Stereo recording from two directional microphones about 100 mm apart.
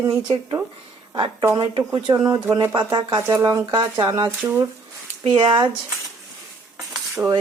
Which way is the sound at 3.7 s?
45° right (ahead or behind).